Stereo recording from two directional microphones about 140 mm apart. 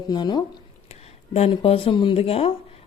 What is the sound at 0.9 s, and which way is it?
Speech, 50° left (ahead or behind).